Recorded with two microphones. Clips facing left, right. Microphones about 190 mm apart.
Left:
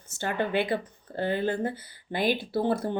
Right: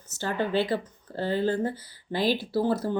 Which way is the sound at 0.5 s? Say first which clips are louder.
Right 1 dB; 55° left (ahead or behind).